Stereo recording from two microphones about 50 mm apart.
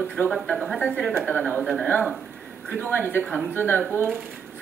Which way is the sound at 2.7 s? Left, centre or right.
Left.